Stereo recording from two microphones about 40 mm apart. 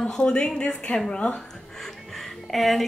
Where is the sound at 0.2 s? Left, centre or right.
Left.